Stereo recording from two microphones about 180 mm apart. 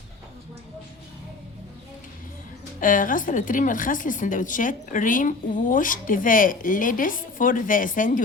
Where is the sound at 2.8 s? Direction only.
50° left (ahead or behind).